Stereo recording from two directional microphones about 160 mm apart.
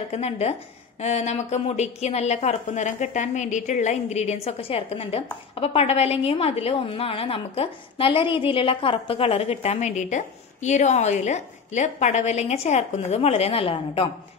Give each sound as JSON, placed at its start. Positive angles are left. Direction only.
{"t": 0.1, "sound": "a woman's voice", "side_deg": 40}